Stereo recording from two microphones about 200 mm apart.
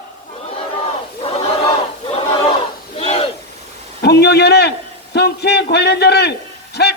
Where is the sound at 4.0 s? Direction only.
55° left (ahead or behind).